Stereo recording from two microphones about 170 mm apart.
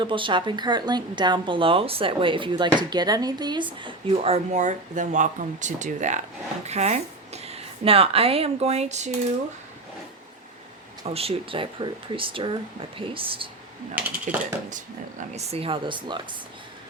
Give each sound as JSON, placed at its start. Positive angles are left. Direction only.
{"t": 0.0, "sound": "a woman's voice", "side_deg": -30}
{"t": 11.0, "sound": "speech", "side_deg": -35}
{"t": 15.3, "sound": "speech", "side_deg": -40}